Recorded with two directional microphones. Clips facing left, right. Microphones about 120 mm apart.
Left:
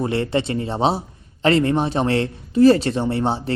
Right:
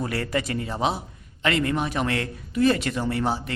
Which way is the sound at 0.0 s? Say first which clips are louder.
Left 6 dB; 25° left (ahead or behind).